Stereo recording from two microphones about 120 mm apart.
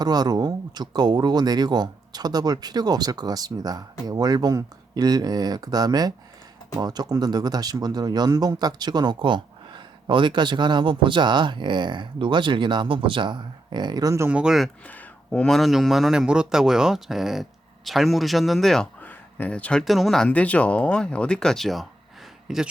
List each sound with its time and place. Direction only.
0.0 s speech: 35° right (ahead or behind)
14.3 s speech: 10° right (ahead or behind)
14.8 s speech: 10° left (ahead or behind)
19.0 s a sound: 10° left (ahead or behind)
19.8 s speech: centre (ahead or behind)